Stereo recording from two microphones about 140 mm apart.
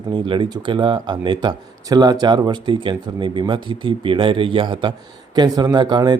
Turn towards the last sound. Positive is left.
turn(degrees=-30)  # may be behind; listen again after turning